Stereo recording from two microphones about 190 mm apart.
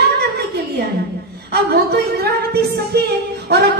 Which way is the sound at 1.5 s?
55° right (ahead or behind).